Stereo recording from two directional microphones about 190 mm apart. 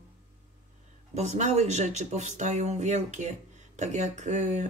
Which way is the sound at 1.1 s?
35° right (ahead or behind).